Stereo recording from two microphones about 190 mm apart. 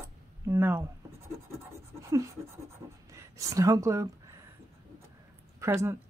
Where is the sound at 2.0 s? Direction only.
15° right (ahead or behind).